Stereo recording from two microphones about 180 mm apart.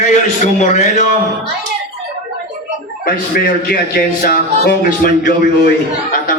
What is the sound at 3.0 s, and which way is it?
A man's voice, 50° left (ahead or behind).